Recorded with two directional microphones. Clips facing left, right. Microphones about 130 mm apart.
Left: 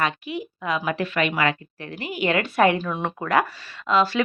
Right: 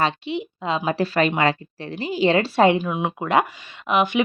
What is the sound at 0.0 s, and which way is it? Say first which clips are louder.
A woman's voice: right 3 dB; 25° right (ahead or behind).